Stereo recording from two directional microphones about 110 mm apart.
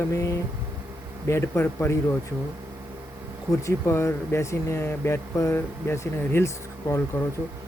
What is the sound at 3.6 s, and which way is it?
Speech, 25° left (ahead or behind).